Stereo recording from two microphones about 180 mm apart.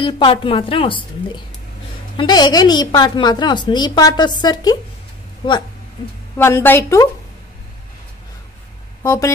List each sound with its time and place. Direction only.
0.0 s a woman's voice: 30° left (ahead or behind)
6.3 s a woman's voice: 15° left (ahead or behind)
9.0 s speech: 15° left (ahead or behind)